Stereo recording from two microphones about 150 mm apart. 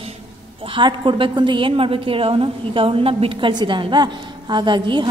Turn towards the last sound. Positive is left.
turn(degrees=-30)  # may be behind; listen again after turning